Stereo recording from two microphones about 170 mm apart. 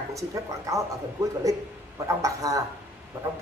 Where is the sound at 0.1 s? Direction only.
20° right (ahead or behind).